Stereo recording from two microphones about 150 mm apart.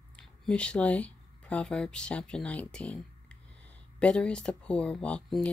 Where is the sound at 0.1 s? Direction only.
5° left (ahead or behind).